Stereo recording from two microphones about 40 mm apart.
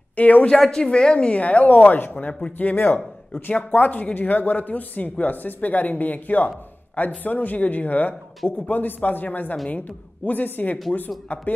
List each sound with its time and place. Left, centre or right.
0.1 s speech: left
0.6 s a woman's voice: centre; by 1.8 s left
1.8 s speech: left
3.5 s speech: left